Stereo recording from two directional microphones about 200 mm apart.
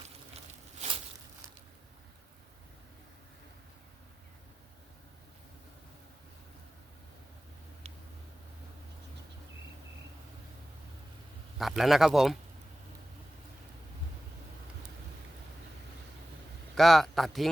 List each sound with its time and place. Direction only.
0.3 s a sound: 30° right (ahead or behind)
11.6 s speech: centre (ahead or behind)
16.7 s speech: centre (ahead or behind)